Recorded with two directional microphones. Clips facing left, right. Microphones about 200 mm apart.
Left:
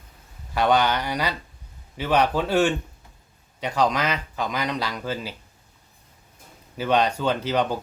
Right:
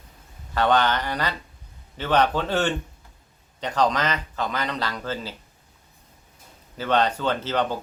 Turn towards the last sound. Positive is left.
turn(degrees=15)  # may be behind; listen again after turning